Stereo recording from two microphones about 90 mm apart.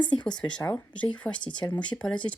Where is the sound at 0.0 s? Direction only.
55° left (ahead or behind).